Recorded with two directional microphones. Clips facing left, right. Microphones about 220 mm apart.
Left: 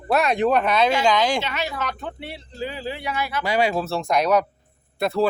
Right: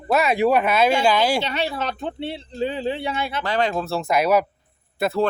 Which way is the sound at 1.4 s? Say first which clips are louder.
Right 3 dB; 30° right (ahead or behind).